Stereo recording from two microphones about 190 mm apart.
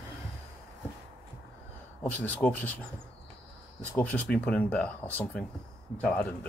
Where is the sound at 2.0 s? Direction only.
10° left (ahead or behind).